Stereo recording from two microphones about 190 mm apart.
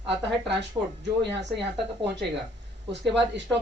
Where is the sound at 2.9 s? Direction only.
65° right (ahead or behind).